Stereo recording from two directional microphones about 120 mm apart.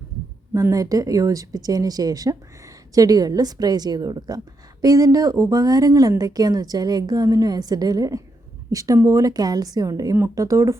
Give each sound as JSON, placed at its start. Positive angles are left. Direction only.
{"t": 0.5, "sound": "a woman's voice", "side_deg": -30}